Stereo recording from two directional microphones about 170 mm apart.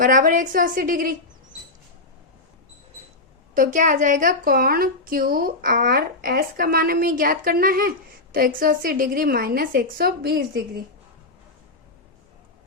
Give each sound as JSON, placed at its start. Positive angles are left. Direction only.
{"t": 0.0, "sound": "a woman's voice", "side_deg": -50}
{"t": 3.5, "sound": "a woman's voice", "side_deg": -50}